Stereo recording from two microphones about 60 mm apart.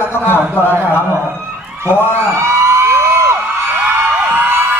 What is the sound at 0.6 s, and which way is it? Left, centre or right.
Speech, right.